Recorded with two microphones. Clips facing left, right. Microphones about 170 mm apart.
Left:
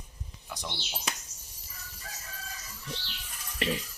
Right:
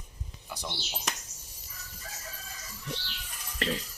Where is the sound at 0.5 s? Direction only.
5° right (ahead or behind).